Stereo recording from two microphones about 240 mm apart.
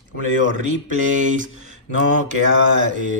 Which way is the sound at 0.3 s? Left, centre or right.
Right.